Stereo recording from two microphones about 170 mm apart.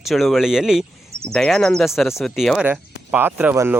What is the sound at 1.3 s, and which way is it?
Speech, 5° left (ahead or behind).